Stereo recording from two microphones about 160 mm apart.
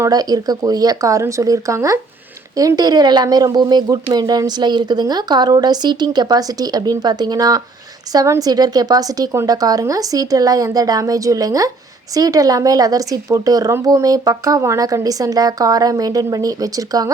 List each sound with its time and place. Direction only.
0.0 s speech: 25° right (ahead or behind)